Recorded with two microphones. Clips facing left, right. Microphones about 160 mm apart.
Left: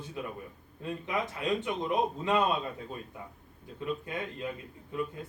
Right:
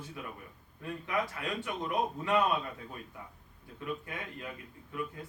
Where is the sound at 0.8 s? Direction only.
20° left (ahead or behind).